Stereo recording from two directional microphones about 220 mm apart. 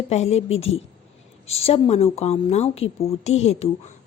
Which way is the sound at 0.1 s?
30° left (ahead or behind).